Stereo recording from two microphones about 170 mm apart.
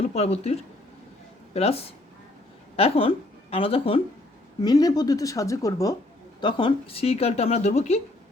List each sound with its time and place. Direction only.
0.1 s a woman's voice: 40° left (ahead or behind)
4.6 s a woman's voice: 20° left (ahead or behind); by 7.7 s 40° left (ahead or behind)